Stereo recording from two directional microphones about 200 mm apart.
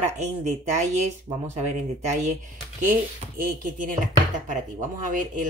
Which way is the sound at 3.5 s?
45° right (ahead or behind).